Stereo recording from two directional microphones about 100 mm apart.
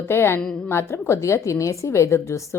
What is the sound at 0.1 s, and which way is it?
A woman's voice, 25° left (ahead or behind).